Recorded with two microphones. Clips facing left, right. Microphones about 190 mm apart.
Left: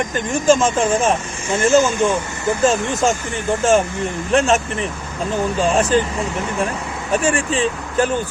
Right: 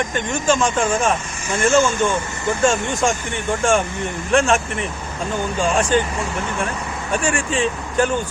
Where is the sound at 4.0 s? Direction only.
30° left (ahead or behind).